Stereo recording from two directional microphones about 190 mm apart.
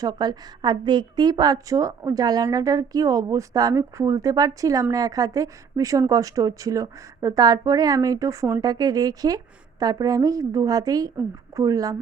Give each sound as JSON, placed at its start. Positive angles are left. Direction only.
{"t": 0.0, "sound": "a woman's voice", "side_deg": -20}